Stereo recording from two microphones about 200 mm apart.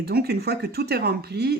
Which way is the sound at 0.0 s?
50° right (ahead or behind).